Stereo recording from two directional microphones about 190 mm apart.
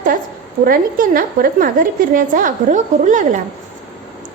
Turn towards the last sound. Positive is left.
turn(degrees=-40)  # may be behind; listen again after turning